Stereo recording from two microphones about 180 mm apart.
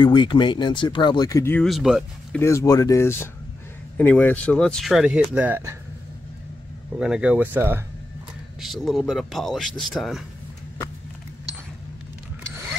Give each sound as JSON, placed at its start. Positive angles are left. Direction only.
{"t": 0.0, "sound": "speech", "side_deg": 25}
{"t": 1.7, "sound": "speech", "side_deg": 0}
{"t": 2.3, "sound": "speech", "side_deg": 15}
{"t": 7.0, "sound": "speech", "side_deg": -5}